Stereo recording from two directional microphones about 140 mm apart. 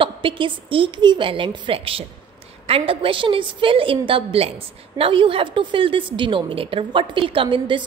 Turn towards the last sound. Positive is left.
turn(degrees=-35)  # may be behind; listen again after turning